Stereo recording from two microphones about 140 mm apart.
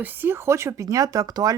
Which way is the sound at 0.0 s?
15° right (ahead or behind).